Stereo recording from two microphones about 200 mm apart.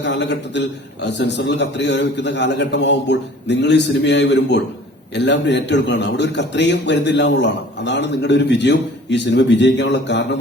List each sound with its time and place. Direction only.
0.0 s a man's voice: 60° left (ahead or behind)